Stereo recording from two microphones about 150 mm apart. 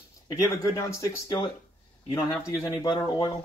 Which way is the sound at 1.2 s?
30° left (ahead or behind).